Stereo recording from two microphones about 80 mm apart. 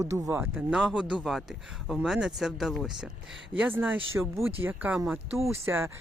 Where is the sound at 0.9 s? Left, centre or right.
Centre.